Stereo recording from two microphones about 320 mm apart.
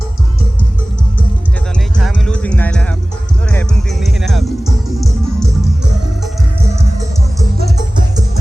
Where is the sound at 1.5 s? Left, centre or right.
Centre.